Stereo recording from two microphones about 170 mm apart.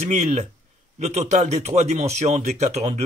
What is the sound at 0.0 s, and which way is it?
Speech, 45° right (ahead or behind).